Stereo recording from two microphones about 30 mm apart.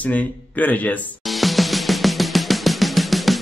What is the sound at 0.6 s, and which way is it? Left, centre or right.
Speech, left.